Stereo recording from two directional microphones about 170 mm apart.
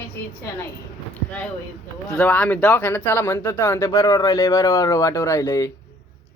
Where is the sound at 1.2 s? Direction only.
10° left (ahead or behind).